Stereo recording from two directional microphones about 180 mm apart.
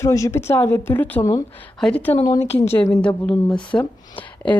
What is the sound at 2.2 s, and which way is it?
Speech, 20° left (ahead or behind).